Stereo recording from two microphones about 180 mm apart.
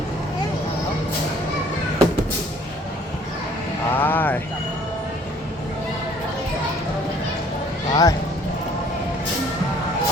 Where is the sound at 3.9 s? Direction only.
10° left (ahead or behind).